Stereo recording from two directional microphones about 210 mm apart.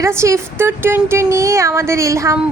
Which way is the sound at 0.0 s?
15° right (ahead or behind).